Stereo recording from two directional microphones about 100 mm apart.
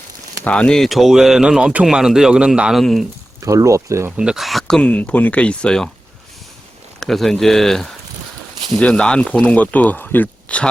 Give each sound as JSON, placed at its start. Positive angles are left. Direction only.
{"t": 0.4, "sound": "speech", "side_deg": 10}
{"t": 3.4, "sound": "speech", "side_deg": -30}
{"t": 4.2, "sound": "speech", "side_deg": -5}
{"t": 4.8, "sound": "speech", "side_deg": 10}
{"t": 7.0, "sound": "speech", "side_deg": 0}